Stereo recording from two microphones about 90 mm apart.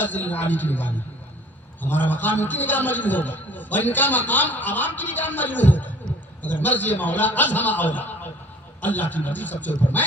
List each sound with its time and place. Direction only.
0.0 s a man's voice: 20° left (ahead or behind)